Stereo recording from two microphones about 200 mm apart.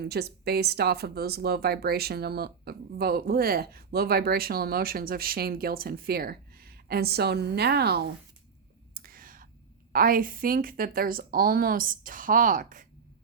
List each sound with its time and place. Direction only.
0.0 s speech: 55° right (ahead or behind)
9.0 s whispering: 45° right (ahead or behind)
9.9 s speech: 45° right (ahead or behind)